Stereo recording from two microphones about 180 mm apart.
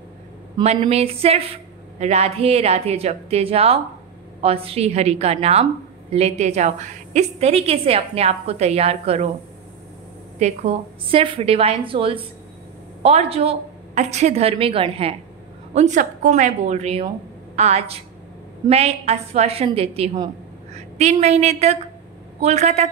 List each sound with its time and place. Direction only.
0.6 s a woman's voice: 30° right (ahead or behind)
10.4 s a woman's voice: 35° right (ahead or behind)